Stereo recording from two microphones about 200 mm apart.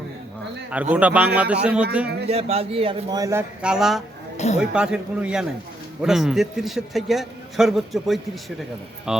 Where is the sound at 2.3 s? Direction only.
30° right (ahead or behind).